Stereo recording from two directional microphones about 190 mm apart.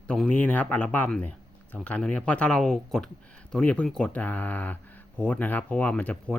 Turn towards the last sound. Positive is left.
turn(degrees=5)  # may be behind; listen again after turning